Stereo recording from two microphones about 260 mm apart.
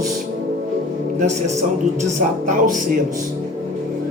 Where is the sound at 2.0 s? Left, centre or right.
Right.